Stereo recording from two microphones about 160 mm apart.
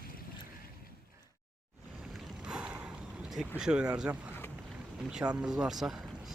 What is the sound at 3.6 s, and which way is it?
Speech, 5° right (ahead or behind).